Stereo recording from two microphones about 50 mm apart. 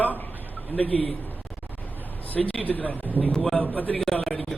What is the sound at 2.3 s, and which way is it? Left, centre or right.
Speech, left.